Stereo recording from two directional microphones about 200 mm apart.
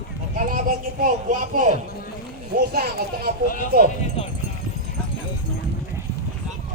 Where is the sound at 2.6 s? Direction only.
50° right (ahead or behind).